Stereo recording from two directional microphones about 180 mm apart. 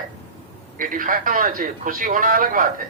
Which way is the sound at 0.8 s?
50° right (ahead or behind).